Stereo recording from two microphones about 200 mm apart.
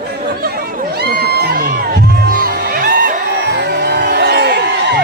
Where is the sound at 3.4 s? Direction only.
60° right (ahead or behind).